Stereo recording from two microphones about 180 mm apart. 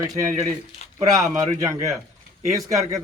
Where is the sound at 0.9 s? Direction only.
20° right (ahead or behind).